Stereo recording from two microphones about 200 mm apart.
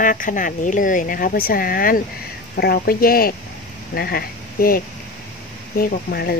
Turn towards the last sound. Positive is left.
turn(degrees=50)  # may be behind; listen again after turning